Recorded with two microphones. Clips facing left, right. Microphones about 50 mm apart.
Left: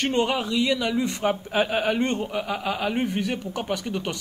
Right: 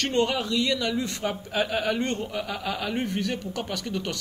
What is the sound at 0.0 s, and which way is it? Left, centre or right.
A man's voice, centre.